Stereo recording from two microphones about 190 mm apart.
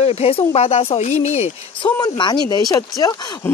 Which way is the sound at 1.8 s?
25° left (ahead or behind).